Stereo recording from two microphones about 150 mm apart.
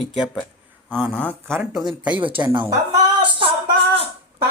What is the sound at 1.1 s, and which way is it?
Speech, 10° left (ahead or behind).